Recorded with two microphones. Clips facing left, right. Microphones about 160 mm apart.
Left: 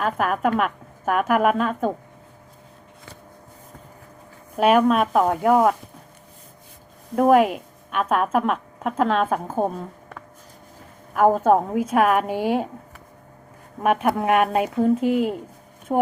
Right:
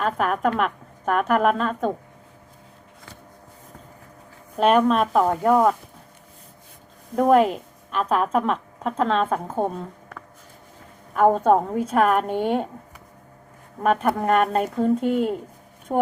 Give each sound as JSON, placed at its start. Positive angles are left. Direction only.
{"t": 0.0, "sound": "a woman's voice", "side_deg": 5}
{"t": 4.5, "sound": "a woman's voice", "side_deg": 5}
{"t": 7.2, "sound": "a woman's voice", "side_deg": 5}
{"t": 11.1, "sound": "a woman's voice", "side_deg": 5}
{"t": 13.8, "sound": "a woman's voice", "side_deg": 10}